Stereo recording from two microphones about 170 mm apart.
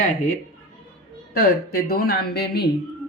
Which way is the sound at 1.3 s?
60° left (ahead or behind).